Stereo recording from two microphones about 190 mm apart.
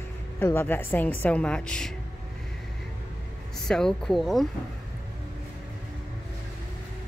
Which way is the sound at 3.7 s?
5° left (ahead or behind).